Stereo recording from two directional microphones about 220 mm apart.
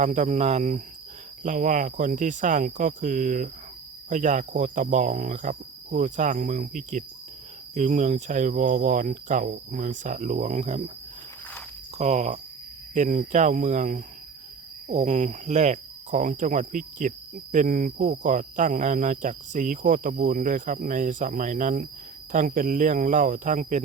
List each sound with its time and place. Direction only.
0.0 s cricket: 35° right (ahead or behind)
11.9 s cricket: 30° right (ahead or behind)